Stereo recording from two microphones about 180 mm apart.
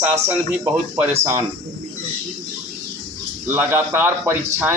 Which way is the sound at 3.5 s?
15° right (ahead or behind).